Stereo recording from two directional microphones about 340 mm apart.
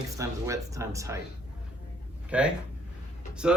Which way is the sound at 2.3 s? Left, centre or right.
Centre.